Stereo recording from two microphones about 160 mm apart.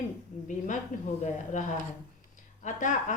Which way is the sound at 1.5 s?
55° left (ahead or behind).